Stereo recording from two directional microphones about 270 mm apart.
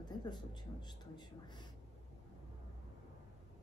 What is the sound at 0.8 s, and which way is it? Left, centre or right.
Speech, centre.